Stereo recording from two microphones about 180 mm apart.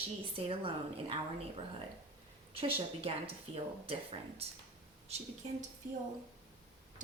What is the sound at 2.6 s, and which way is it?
Speech, 30° right (ahead or behind).